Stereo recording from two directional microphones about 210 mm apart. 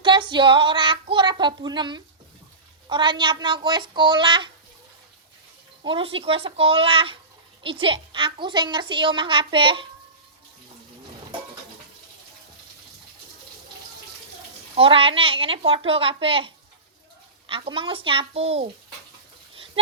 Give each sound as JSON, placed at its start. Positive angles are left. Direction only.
{"t": 0.0, "sound": "a woman's voice", "side_deg": -20}
{"t": 5.8, "sound": "a woman's voice", "side_deg": -25}
{"t": 14.8, "sound": "a woman's voice", "side_deg": -25}